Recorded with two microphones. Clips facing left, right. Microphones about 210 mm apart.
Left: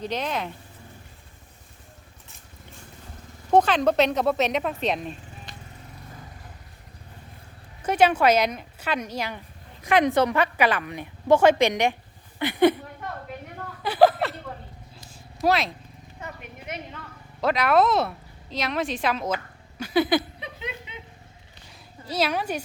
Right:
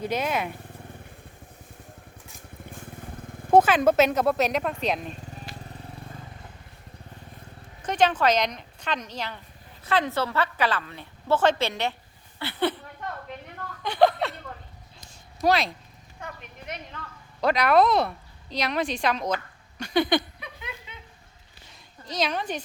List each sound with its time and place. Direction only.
0.0 s speech: 10° right (ahead or behind)
3.5 s speech: 5° right (ahead or behind)
7.8 s a woman's voice: 10° left (ahead or behind)
13.8 s a sound: 5° left (ahead or behind)
15.4 s speech: centre (ahead or behind)
17.4 s speech: centre (ahead or behind)
19.8 s a sound: 5° left (ahead or behind)
20.4 s chuckle: 20° left (ahead or behind)
22.0 s a woman's voice: 5° left (ahead or behind)